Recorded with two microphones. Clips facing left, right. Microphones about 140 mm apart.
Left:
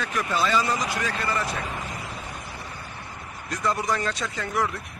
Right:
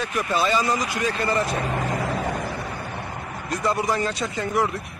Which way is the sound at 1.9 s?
90° right.